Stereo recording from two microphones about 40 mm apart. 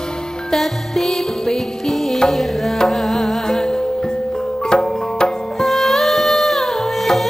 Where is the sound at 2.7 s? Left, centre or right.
Centre.